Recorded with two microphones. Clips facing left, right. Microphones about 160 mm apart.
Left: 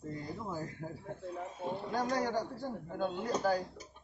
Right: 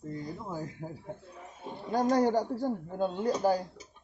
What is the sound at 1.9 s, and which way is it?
A man's voice, 40° right (ahead or behind).